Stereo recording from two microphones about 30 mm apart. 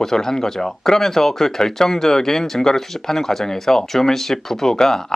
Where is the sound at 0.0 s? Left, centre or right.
Centre.